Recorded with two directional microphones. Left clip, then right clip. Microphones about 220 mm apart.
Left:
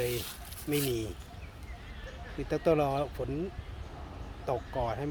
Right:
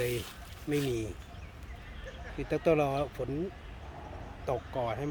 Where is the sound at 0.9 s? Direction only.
5° right (ahead or behind).